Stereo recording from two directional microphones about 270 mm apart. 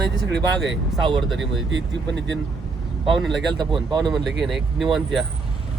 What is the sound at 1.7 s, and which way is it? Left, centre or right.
Speech, right.